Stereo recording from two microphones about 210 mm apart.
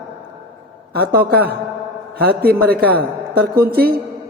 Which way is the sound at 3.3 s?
45° right (ahead or behind).